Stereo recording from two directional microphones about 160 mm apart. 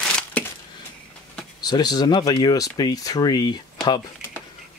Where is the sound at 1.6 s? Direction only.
25° left (ahead or behind).